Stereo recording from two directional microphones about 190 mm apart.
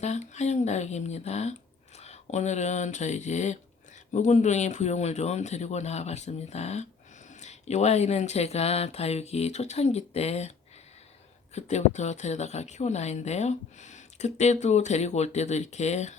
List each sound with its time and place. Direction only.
0.0 s a woman's voice: 35° left (ahead or behind)
11.5 s a woman's voice: 35° left (ahead or behind)